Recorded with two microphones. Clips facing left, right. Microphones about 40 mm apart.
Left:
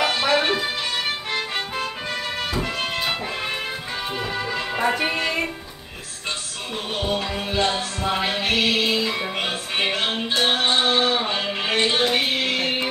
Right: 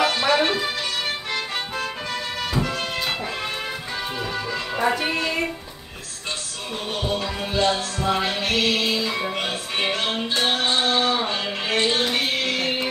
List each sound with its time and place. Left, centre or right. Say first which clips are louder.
0.0 s music: right 1 dB; centre
4.2 s music: left 1 dB; centre
4.9 s music: left 1 dB; left
7.5 s music: right 2 dB; centre